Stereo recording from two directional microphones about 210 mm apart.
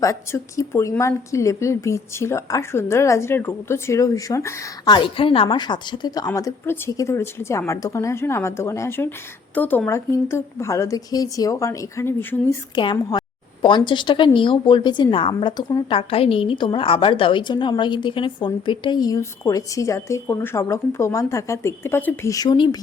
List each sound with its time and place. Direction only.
0.0 s a woman's voice: 15° left (ahead or behind)